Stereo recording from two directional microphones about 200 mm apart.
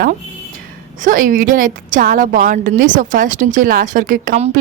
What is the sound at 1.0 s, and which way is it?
A woman's voice, 40° right (ahead or behind).